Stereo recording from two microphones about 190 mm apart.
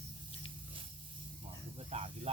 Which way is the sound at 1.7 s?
35° right (ahead or behind).